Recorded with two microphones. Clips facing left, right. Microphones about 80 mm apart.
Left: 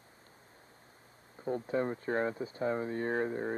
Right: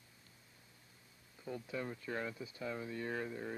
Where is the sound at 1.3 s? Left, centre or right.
Left.